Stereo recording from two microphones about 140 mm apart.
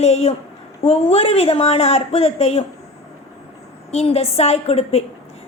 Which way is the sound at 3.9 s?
45° left (ahead or behind).